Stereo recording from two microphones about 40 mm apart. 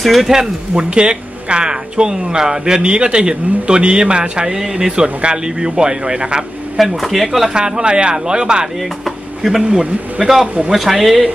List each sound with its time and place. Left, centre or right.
0.0 s speech: centre
0.3 s speech: centre
6.8 s speech: centre
7.5 s speech: right
9.0 s a sound: centre
9.6 s speech: centre